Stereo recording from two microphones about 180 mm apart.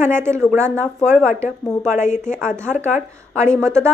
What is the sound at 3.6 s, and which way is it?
Speech, 15° right (ahead or behind).